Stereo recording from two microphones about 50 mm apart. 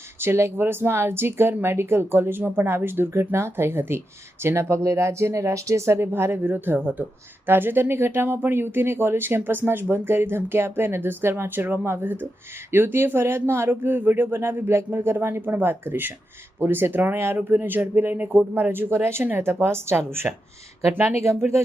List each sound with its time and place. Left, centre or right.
0.2 s speech: right
3.1 s speech: right
4.4 s speech: right
7.4 s speech: right
12.7 s speech: right
18.7 s speech: right
21.2 s speech: right